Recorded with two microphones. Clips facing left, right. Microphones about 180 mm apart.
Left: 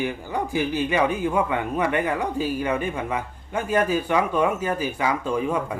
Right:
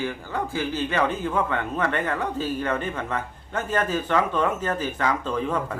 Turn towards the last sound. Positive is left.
turn(degrees=10)  # may be behind; listen again after turning